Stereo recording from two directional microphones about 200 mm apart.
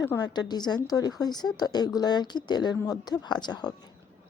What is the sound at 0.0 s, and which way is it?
A woman's voice, 15° left (ahead or behind).